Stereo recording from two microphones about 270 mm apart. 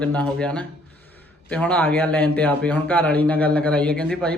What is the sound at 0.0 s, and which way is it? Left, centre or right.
Speech, centre.